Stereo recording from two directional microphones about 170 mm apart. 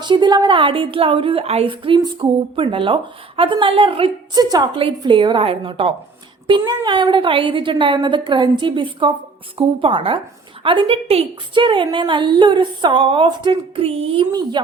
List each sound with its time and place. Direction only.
0.0 s a woman's voice: 25° right (ahead or behind)